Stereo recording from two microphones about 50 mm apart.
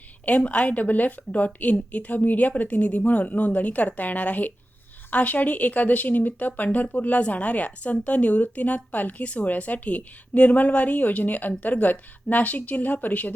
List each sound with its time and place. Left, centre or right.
0.3 s a woman's voice: left